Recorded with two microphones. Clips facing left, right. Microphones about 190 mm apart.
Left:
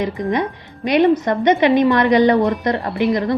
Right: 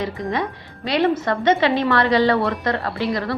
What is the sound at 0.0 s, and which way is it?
A woman's voice, 20° left (ahead or behind).